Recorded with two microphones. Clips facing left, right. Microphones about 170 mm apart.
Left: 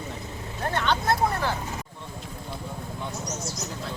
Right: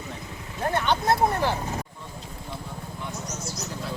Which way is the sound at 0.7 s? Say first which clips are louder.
Right 2 dB; 15° right (ahead or behind).